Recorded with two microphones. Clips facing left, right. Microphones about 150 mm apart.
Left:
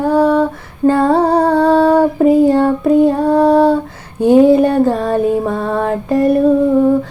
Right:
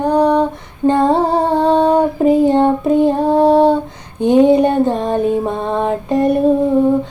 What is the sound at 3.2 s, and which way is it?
Female singing, 25° right (ahead or behind).